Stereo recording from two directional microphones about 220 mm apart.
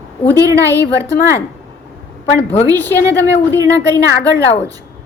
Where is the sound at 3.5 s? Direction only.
15° right (ahead or behind).